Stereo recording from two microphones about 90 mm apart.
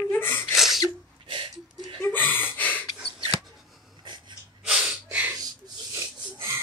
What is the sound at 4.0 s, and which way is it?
Wheeze, 60° right (ahead or behind).